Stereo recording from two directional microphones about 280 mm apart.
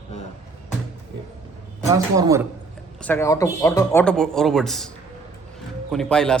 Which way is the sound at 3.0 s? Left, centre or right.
Centre.